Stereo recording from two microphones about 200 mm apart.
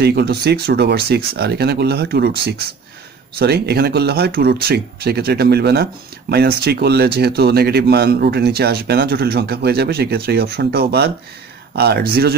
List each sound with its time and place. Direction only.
0.0 s speech: 55° right (ahead or behind)